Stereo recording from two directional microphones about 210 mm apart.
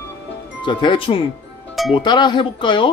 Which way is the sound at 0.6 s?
25° left (ahead or behind).